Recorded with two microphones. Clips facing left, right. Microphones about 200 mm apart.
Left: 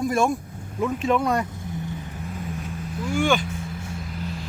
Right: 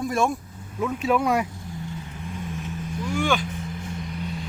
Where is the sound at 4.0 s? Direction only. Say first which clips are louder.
Right 1 dB; centre (ahead or behind).